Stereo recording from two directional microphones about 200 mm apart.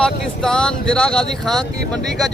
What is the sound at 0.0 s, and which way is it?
Speech, 5° left (ahead or behind).